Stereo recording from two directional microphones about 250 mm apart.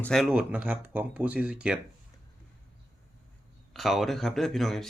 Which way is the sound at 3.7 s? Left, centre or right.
Centre.